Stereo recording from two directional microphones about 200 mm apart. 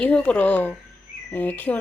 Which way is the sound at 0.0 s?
5° left (ahead or behind).